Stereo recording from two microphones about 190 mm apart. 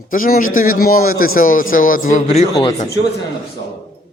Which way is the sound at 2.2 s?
30° left (ahead or behind).